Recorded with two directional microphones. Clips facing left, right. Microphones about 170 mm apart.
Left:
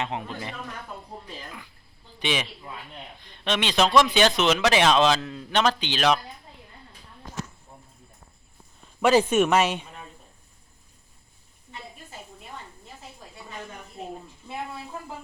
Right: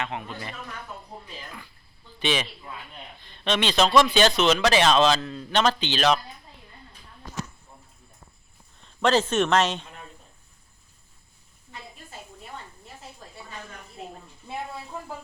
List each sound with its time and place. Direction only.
0.0 s a man's voice: 30° left (ahead or behind)
2.1 s a man's voice: 15° left (ahead or behind)
8.8 s speech: 10° left (ahead or behind)